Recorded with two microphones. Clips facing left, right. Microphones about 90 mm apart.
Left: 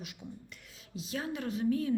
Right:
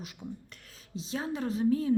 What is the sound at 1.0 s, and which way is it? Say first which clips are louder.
Speech: right 3 dB; 30° right (ahead or behind).